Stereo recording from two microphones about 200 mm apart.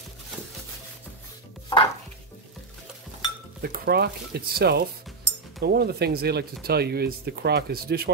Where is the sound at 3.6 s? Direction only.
50° right (ahead or behind).